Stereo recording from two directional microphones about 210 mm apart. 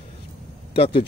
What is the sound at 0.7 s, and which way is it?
Speech, 25° left (ahead or behind).